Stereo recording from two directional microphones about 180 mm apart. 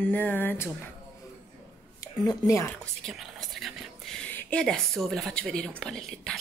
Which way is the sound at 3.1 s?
Centre (ahead or behind).